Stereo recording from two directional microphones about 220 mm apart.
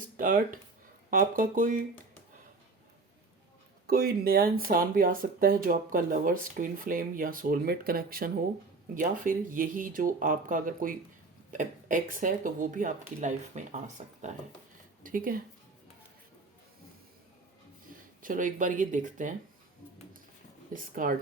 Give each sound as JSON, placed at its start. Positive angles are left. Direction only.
{"t": 0.2, "sound": "speech", "side_deg": -40}
{"t": 3.8, "sound": "speech", "side_deg": -45}
{"t": 17.9, "sound": "speech", "side_deg": -40}
{"t": 20.7, "sound": "speech", "side_deg": -40}